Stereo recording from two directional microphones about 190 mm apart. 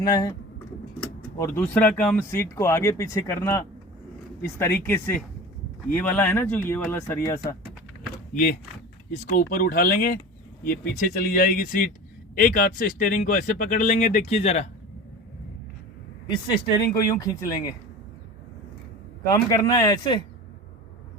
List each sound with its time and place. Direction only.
0.0 s speech: 20° left (ahead or behind)
1.4 s speech: 10° left (ahead or behind)
8.3 s speech: 45° left (ahead or behind)
16.3 s speech: 20° left (ahead or behind)
19.3 s speech: 15° left (ahead or behind)